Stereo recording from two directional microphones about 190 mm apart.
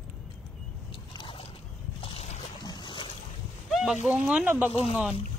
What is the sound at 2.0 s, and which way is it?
Boat, 30° left (ahead or behind).